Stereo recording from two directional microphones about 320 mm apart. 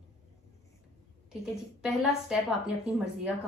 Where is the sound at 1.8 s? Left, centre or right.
Centre.